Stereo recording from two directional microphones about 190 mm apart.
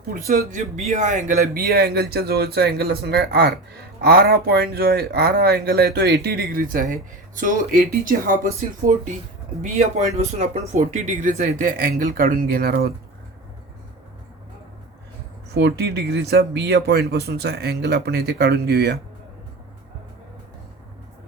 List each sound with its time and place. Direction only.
0.3 s speech: 45° right (ahead or behind)
10.2 s speech: 35° right (ahead or behind); by 12.9 s 55° right (ahead or behind)
15.5 s speech: 60° right (ahead or behind)